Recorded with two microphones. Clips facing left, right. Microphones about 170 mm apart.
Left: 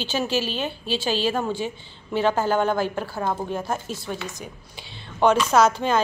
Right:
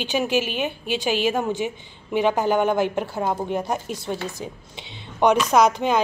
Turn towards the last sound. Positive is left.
turn(degrees=-15)  # may be behind; listen again after turning